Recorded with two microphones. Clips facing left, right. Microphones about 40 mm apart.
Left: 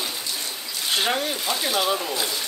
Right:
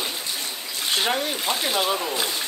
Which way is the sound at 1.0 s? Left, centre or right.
Centre.